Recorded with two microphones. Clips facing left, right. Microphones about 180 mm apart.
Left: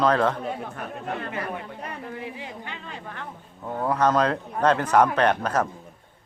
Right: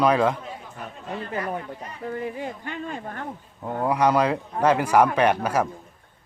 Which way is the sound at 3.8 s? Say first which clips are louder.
Right 1 dB; 10° right (ahead or behind).